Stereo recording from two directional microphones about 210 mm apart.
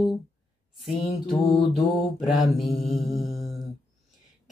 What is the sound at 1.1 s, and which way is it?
Mantra, 25° left (ahead or behind).